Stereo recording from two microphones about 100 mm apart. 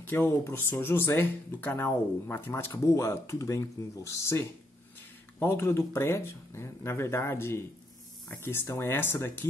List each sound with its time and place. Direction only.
0.0 s speech: 25° left (ahead or behind)